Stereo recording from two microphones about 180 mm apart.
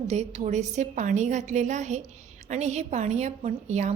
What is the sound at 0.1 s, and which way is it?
A woman's voice, 40° right (ahead or behind).